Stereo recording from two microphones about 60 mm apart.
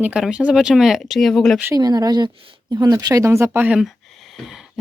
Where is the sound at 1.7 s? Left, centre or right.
Right.